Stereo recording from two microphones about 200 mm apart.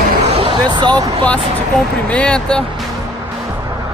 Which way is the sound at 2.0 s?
5° left (ahead or behind).